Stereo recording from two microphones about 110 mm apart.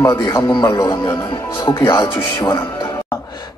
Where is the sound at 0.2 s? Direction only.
30° left (ahead or behind).